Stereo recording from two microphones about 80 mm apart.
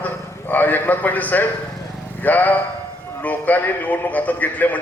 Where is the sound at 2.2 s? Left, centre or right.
Left.